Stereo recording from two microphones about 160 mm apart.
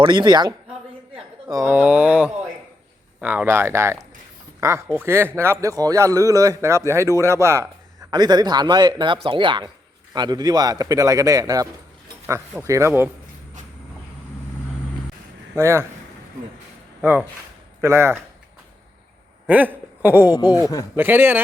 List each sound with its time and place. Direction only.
0.0 s a man's voice: 30° right (ahead or behind)
15.5 s a man's voice: 15° right (ahead or behind)
17.0 s speech: 10° right (ahead or behind)
19.5 s speech: 10° right (ahead or behind)
20.3 s speech: 25° left (ahead or behind)
20.9 s a man's voice: 15° right (ahead or behind)